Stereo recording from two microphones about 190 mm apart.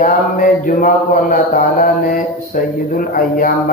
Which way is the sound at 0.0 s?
45° left (ahead or behind).